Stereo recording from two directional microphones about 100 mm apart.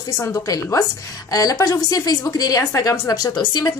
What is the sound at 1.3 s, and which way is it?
A woman's voice, 35° left (ahead or behind).